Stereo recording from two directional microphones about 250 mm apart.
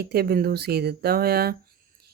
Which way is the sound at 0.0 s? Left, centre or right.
Right.